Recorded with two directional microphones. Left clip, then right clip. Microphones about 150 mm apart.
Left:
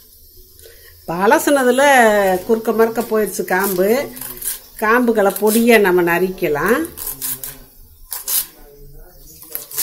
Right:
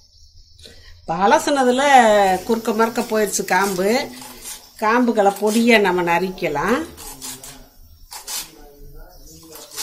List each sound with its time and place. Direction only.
1.0 s speech: 55° left (ahead or behind)